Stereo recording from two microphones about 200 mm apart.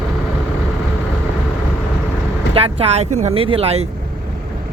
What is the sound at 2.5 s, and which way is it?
Speech, 30° right (ahead or behind).